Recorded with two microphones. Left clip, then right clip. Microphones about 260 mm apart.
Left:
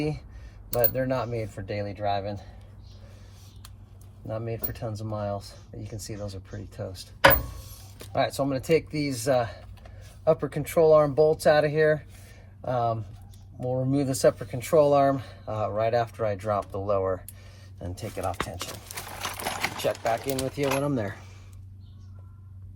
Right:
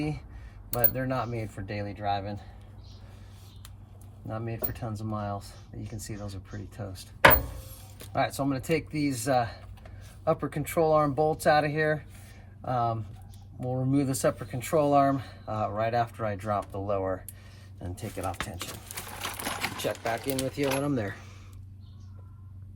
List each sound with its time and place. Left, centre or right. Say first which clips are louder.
0.7 s speech: left 5 dB; centre
4.3 s speech: left 3 dB; centre
6.1 s speech: left 4 dB; left
8.2 s speech: left 3 dB; centre
20.8 s speech: left 2 dB; centre